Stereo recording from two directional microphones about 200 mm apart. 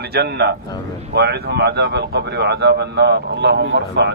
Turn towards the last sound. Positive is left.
turn(degrees=-60)  # may be behind; listen again after turning